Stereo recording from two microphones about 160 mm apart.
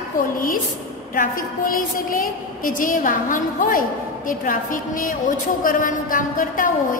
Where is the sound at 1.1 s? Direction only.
60° left (ahead or behind).